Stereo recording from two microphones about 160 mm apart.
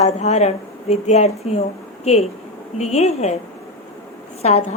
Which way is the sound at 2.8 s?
45° left (ahead or behind).